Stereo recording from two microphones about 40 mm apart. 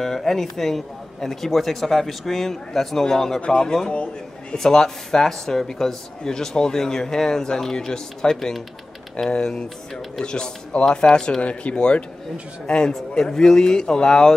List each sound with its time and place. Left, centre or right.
0.0 s a man's voice: centre; by 4.6 s left
4.6 s speech: centre
10.2 s a man's voice: left
11.4 s a man's voice: left